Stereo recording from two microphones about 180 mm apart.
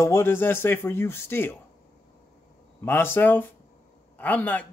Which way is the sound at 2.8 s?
10° left (ahead or behind).